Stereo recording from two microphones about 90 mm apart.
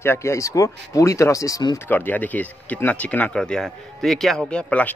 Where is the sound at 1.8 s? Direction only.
20° left (ahead or behind).